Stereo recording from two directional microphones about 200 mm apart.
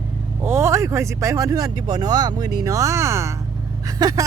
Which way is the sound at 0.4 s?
10° right (ahead or behind).